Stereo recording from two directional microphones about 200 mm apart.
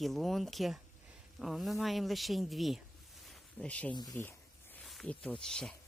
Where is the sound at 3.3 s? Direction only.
5° left (ahead or behind).